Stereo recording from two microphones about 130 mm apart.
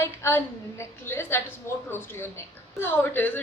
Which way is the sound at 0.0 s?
20° left (ahead or behind).